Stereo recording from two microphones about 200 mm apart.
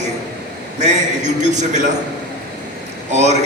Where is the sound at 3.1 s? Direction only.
35° right (ahead or behind).